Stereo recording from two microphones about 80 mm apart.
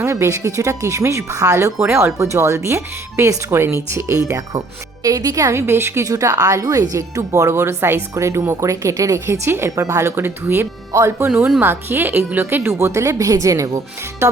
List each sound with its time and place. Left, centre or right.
0.0 s speech: right
1.8 s speech: right
6.1 s speech: right